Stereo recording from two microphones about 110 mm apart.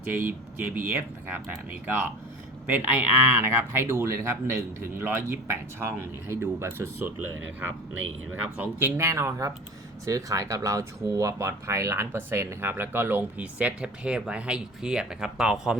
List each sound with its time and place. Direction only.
0.1 s speech: 20° right (ahead or behind)
8.5 s speech: 20° right (ahead or behind)